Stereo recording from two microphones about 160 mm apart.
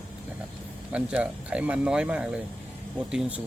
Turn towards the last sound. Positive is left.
turn(degrees=-5)  # may be behind; listen again after turning